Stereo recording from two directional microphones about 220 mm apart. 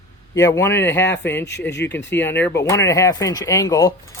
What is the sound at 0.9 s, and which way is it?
Speech, 55° left (ahead or behind).